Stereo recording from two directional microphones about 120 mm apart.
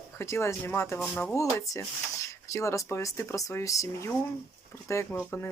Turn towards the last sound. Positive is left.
turn(degrees=25)  # may be behind; listen again after turning